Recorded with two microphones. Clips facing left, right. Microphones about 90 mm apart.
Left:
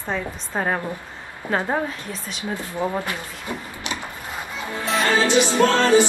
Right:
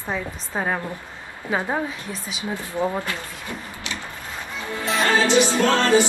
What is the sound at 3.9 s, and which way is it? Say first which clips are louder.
Wood: left 3 dB; 20° left (ahead or behind).